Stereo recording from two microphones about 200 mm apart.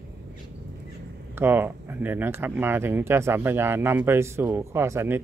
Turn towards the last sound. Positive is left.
turn(degrees=-15)  # may be behind; listen again after turning